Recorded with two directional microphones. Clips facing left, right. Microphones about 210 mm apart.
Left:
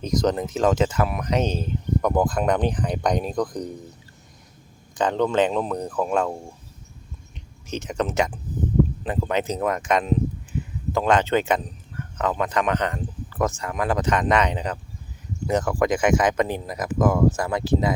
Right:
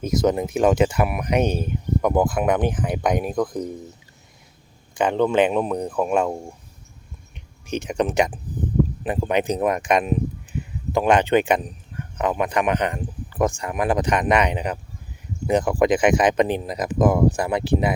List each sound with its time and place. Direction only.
0.0 s speech: 5° right (ahead or behind)
4.9 s speech: 10° right (ahead or behind)
7.7 s speech: 15° right (ahead or behind)